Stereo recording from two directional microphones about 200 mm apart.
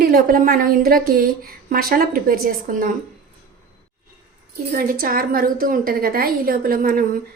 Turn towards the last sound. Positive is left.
turn(degrees=-45)  # may be behind; listen again after turning